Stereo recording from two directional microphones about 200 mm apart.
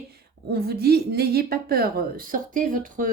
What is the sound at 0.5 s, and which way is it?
A woman's voice, 50° right (ahead or behind).